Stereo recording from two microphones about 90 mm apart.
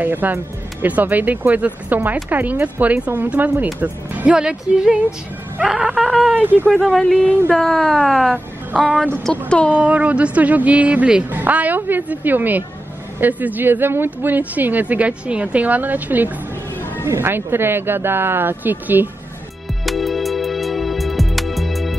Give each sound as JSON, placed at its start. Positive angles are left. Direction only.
{"t": 0.0, "sound": "speech", "side_deg": -20}
{"t": 6.3, "sound": "speech", "side_deg": -20}
{"t": 6.7, "sound": "speech", "side_deg": 5}
{"t": 8.3, "sound": "a woman's voice", "side_deg": -10}
{"t": 19.8, "sound": "music", "side_deg": 0}